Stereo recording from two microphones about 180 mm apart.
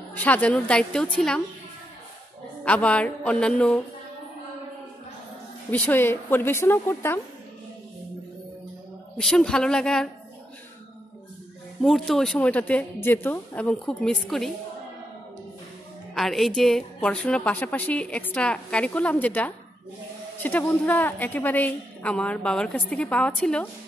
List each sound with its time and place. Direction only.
0.1 s a woman's voice: 10° left (ahead or behind)
2.6 s a woman's voice: 5° left (ahead or behind)
5.7 s a woman's voice: 10° left (ahead or behind)
9.1 s a woman's voice: 5° left (ahead or behind)
11.8 s a woman's voice: centre (ahead or behind)
16.2 s a woman's voice: centre (ahead or behind)